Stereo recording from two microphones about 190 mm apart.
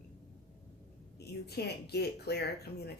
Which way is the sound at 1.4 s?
60° left (ahead or behind).